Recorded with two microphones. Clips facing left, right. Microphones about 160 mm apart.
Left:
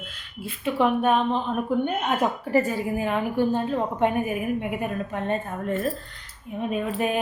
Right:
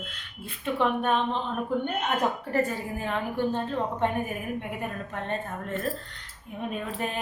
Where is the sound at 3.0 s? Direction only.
10° left (ahead or behind).